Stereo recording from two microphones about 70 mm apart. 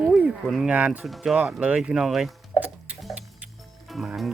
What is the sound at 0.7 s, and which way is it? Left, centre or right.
Speech, right.